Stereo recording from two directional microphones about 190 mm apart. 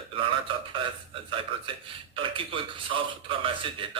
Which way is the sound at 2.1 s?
25° right (ahead or behind).